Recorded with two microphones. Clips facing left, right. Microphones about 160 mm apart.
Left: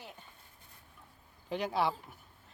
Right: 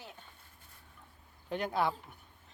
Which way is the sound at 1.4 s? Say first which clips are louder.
Even; centre (ahead or behind).